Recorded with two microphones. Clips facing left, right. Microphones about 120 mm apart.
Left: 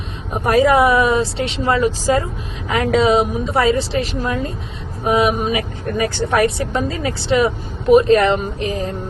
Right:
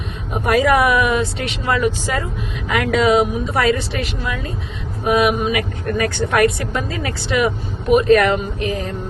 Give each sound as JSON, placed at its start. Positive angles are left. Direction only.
{"t": 0.4, "sound": "speech", "side_deg": 30}
{"t": 5.0, "sound": "speech", "side_deg": 25}